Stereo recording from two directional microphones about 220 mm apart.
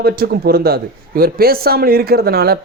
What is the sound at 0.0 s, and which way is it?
A man's voice, 45° right (ahead or behind).